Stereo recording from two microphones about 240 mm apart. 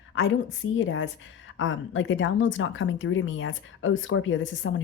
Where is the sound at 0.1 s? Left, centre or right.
Left.